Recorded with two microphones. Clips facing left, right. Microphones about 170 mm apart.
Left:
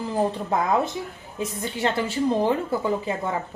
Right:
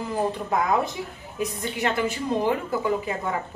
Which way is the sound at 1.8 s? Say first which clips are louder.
Left 2 dB; 30° left (ahead or behind).